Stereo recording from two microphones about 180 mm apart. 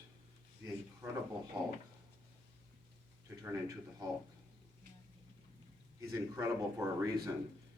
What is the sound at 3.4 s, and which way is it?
Speech, 20° right (ahead or behind).